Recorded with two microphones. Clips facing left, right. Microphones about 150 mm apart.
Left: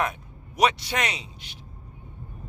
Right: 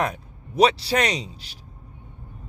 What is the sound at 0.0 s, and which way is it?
Speech, 35° right (ahead or behind).